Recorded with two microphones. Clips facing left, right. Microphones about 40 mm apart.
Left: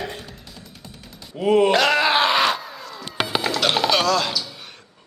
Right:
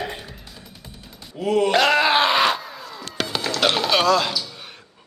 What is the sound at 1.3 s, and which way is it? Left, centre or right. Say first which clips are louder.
Speech: left 3 dB; centre.